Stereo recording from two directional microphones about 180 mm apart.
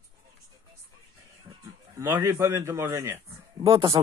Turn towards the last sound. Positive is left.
turn(degrees=-30)  # may be behind; listen again after turning